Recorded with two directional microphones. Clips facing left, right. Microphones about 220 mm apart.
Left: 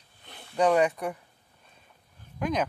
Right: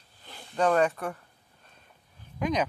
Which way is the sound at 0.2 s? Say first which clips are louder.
Right 1 dB; 60° left (ahead or behind).